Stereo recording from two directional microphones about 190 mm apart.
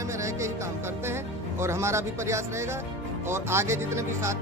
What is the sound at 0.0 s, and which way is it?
Music, 15° right (ahead or behind).